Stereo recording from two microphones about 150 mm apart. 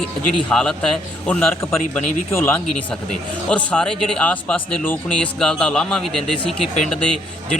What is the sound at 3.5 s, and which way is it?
Speech, 5° left (ahead or behind).